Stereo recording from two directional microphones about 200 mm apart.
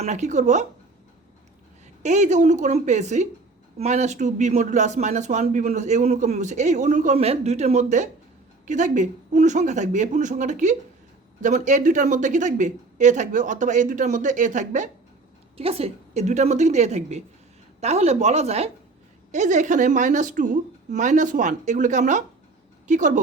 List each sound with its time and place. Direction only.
0.0 s speech: 35° right (ahead or behind)
2.0 s speech: 35° right (ahead or behind)